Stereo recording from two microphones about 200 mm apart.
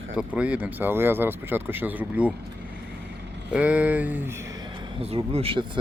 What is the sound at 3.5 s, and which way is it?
Speech, 5° right (ahead or behind).